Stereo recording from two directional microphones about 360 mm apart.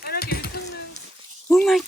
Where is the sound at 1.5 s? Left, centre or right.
Centre.